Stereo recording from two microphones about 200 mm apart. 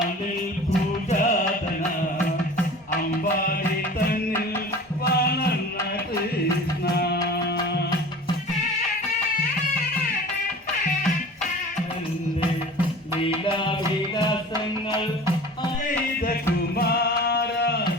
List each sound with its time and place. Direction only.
1.1 s music: 40° left (ahead or behind)
5.0 s music: 50° left (ahead or behind)
6.9 s music: 55° left (ahead or behind)
13.4 s music: 25° left (ahead or behind)
15.9 s music: 45° left (ahead or behind)